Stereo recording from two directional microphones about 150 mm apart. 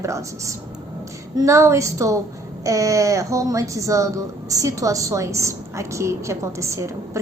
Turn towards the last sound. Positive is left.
turn(degrees=-20)  # may be behind; listen again after turning